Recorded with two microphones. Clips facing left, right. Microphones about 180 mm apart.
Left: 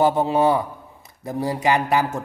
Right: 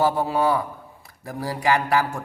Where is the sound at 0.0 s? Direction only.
20° left (ahead or behind).